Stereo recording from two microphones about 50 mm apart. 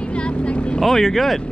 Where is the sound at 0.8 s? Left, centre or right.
Centre.